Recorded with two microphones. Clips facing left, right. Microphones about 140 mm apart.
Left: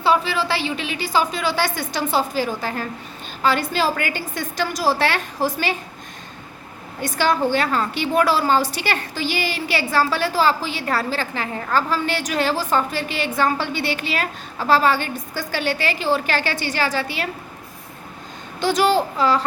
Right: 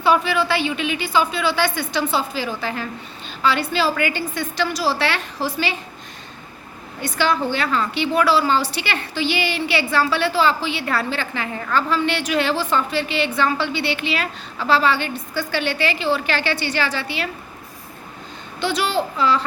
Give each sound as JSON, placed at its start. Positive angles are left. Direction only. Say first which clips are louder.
{"t": 0.0, "sound": "a woman's voice", "louder": "right 1 dB", "side_deg": 30}
{"t": 7.0, "sound": "a woman's voice", "louder": "left 1 dB", "side_deg": 45}
{"t": 18.6, "sound": "a woman's voice", "louder": "left 4 dB", "side_deg": 45}